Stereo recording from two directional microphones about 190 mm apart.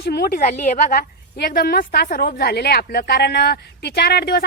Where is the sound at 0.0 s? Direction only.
55° left (ahead or behind).